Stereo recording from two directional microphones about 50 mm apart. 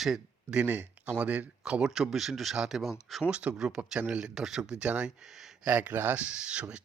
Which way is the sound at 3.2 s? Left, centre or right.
Right.